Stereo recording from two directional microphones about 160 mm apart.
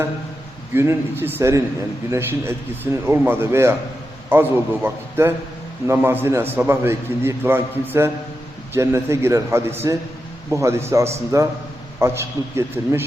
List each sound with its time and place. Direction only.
0.7 s a man's voice: 15° right (ahead or behind)